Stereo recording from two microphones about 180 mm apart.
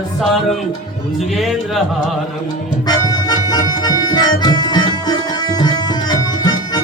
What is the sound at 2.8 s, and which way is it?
Accordion, 20° left (ahead or behind).